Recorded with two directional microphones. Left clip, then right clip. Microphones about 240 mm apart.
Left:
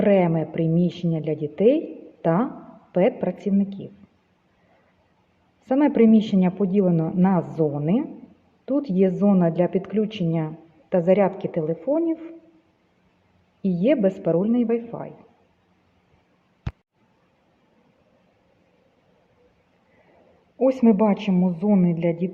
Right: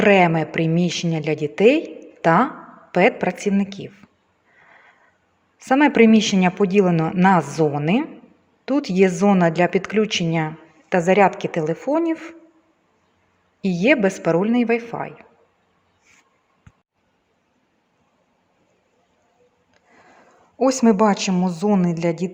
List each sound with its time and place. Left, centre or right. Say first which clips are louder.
0.0 s a man's voice: right 5 dB; right
5.6 s a man's voice: right 4 dB; right
13.6 s a man's voice: right 3 dB; right
20.6 s a man's voice: right 2 dB; right